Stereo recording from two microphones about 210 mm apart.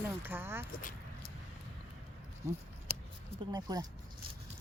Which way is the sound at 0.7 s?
45° left (ahead or behind).